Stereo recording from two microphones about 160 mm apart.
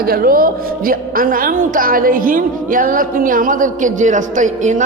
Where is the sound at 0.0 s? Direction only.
70° right (ahead or behind).